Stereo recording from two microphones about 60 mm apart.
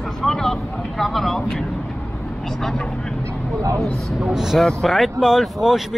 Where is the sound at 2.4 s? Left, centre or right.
Centre.